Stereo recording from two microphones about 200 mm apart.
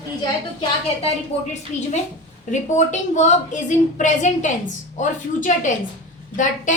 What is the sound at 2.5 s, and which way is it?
A woman's voice, 35° left (ahead or behind).